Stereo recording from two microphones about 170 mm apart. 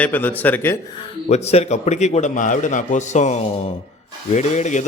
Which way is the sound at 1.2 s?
40° left (ahead or behind).